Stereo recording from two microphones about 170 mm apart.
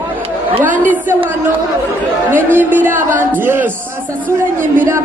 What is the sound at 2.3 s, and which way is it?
A woman's voice, 10° right (ahead or behind).